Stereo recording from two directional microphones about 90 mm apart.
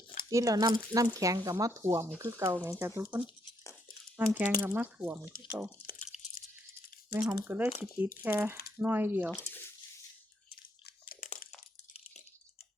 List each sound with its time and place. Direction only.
0.3 s speech: 40° right (ahead or behind)
4.4 s speech: 20° right (ahead or behind)
7.3 s speech: 25° right (ahead or behind)
9.5 s drip: 25° left (ahead or behind)